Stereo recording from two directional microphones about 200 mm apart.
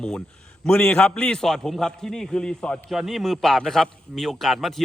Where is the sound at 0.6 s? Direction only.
10° left (ahead or behind).